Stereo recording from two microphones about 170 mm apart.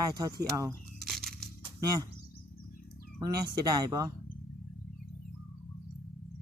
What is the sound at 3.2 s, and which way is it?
Speech, 25° right (ahead or behind).